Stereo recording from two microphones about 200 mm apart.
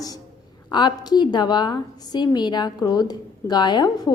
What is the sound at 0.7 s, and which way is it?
A woman's voice, 20° left (ahead or behind).